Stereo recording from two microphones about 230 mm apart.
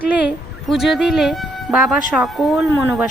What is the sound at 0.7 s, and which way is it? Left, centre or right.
A woman's voice, centre.